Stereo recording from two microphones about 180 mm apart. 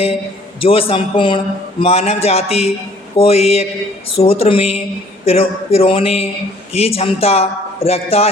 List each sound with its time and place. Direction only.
0.6 s a man's voice: 30° left (ahead or behind)